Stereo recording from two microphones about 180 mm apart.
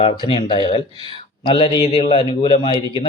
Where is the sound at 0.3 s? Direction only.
30° left (ahead or behind).